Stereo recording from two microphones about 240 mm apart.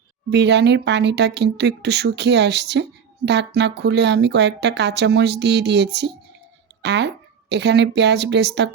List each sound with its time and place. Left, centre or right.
0.3 s speech: right